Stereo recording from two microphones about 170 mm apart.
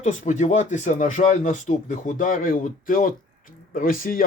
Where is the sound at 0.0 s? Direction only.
45° left (ahead or behind).